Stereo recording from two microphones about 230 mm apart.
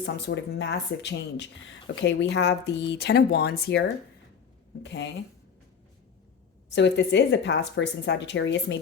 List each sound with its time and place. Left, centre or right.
0.0 s a woman's voice: left
6.7 s a woman's voice: left